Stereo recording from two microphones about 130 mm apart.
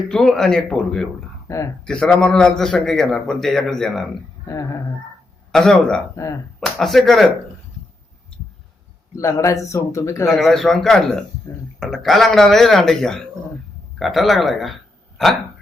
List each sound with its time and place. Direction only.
0.1 s a man's voice: 5° left (ahead or behind)
1.5 s speech: 25° left (ahead or behind)
1.8 s a man's voice: 5° left (ahead or behind)
4.4 s a man's voice: 25° left (ahead or behind)
5.5 s a man's voice: 5° left (ahead or behind)
6.1 s a man's voice: 20° left (ahead or behind)
6.6 s a man's voice: centre (ahead or behind)
9.1 s a man's voice: 25° left (ahead or behind)
10.2 s a man's voice: centre (ahead or behind)
11.5 s a man's voice: 20° left (ahead or behind)
11.8 s a man's voice: 5° left (ahead or behind)